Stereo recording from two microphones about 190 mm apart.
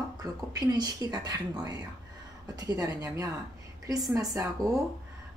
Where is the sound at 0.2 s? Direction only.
20° right (ahead or behind).